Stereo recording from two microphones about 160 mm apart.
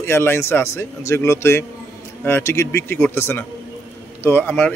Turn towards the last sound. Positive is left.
turn(degrees=10)  # may be behind; listen again after turning